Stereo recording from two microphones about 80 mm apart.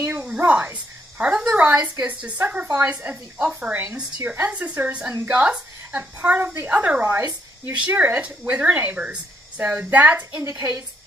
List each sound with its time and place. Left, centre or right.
0.0 s a sound: right
0.4 s cricket: right
1.5 s speech: right